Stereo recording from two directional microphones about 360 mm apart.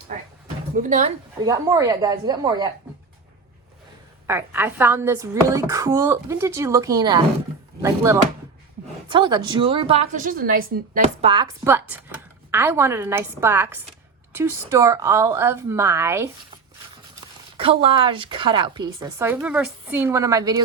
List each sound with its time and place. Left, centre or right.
0.8 s speech: right
1.5 s a woman's voice: centre
4.3 s a woman's voice: centre
17.6 s a woman's voice: centre